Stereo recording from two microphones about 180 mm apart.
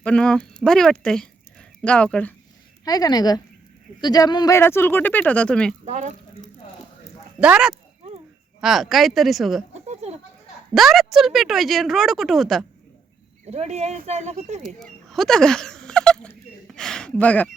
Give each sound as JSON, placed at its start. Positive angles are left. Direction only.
{"t": 0.0, "sound": "speech", "side_deg": 5}
{"t": 2.8, "sound": "speech", "side_deg": 20}
{"t": 5.8, "sound": "speech", "side_deg": -40}
{"t": 7.3, "sound": "speech", "side_deg": -5}
{"t": 9.9, "sound": "a sound", "side_deg": -35}
{"t": 10.8, "sound": "speech", "side_deg": 0}
{"t": 13.5, "sound": "speech", "side_deg": -35}
{"t": 14.6, "sound": "fowl", "side_deg": 0}